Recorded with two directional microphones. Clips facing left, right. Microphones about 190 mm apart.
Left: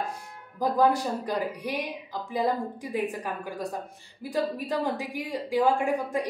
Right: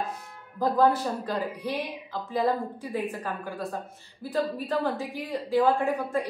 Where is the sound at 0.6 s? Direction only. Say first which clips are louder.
Right 1 dB; 15° left (ahead or behind).